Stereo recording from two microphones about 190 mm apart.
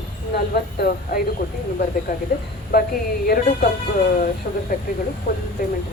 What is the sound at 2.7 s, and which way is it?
Speech, 50° left (ahead or behind).